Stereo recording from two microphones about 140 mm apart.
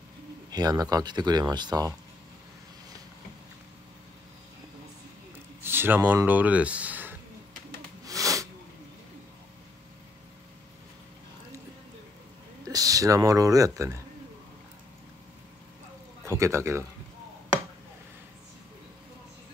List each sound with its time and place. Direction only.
0.5 s speech: 25° right (ahead or behind)
5.6 s speech: 15° right (ahead or behind)
8.0 s a sound: 25° right (ahead or behind)
12.6 s speech: 25° right (ahead or behind)
16.3 s speech: 20° right (ahead or behind)